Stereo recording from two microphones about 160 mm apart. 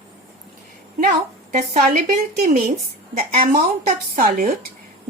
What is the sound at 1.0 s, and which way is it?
A woman's voice, 50° right (ahead or behind).